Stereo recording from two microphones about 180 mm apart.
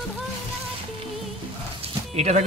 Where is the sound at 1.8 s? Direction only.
35° right (ahead or behind).